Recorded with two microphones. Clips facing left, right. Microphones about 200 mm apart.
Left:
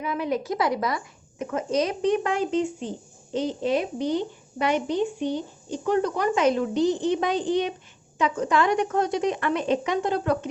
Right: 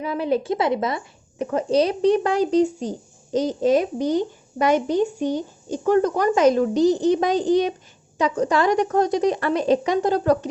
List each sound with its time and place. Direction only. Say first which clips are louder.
0.0 s speech: right 4 dB; 30° right (ahead or behind)